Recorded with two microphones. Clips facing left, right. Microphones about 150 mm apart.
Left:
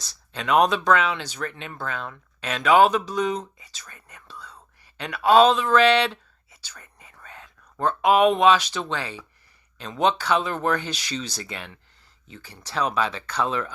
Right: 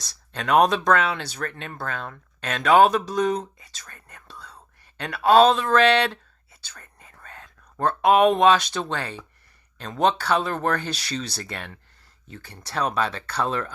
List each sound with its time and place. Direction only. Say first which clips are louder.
0.3 s speech: right 1 dB; 45° right (ahead or behind)
3.8 s whispering: even; 45° right (ahead or behind)
4.9 s speech: even; 40° right (ahead or behind)
7.0 s whispering: even; 45° right (ahead or behind)
7.9 s speech: right 1 dB; 35° right (ahead or behind)
13.0 s speech: even; 50° right (ahead or behind)